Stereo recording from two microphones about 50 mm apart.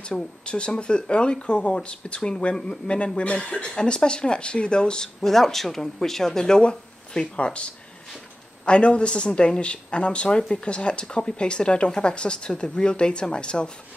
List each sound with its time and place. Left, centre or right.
0.0 s speech: centre